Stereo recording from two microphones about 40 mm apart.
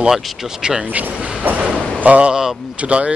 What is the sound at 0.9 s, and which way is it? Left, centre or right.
Speech, right.